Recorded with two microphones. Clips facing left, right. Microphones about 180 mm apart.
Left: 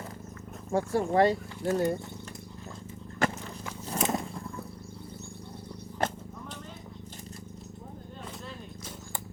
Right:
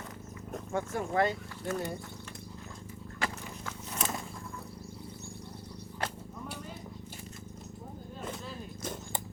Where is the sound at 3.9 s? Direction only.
30° left (ahead or behind).